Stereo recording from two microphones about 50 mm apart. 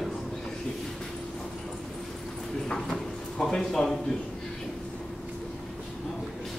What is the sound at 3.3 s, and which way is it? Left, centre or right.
Speech, centre.